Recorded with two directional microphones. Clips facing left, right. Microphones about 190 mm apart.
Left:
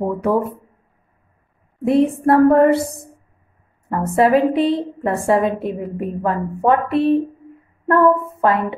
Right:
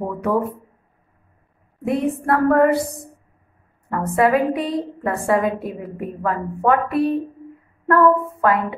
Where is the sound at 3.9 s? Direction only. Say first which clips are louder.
Left 3 dB; 25° left (ahead or behind).